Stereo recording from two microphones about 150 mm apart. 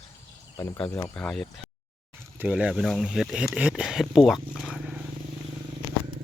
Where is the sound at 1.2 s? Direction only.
5° left (ahead or behind).